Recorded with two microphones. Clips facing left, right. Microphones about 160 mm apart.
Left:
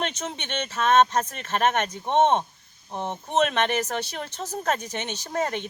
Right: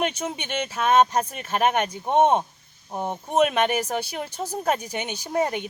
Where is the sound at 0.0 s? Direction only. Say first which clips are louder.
Right 4 dB; 10° right (ahead or behind).